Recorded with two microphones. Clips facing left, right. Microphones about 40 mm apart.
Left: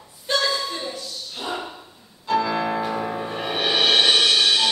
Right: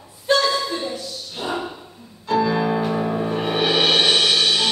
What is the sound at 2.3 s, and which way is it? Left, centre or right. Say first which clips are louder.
Music: right 2 dB; centre.